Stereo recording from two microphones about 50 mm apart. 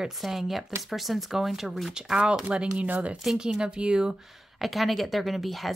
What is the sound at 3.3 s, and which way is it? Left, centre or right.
Speech, centre.